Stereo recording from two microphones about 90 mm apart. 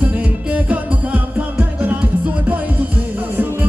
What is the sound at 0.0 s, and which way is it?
Music, 15° right (ahead or behind).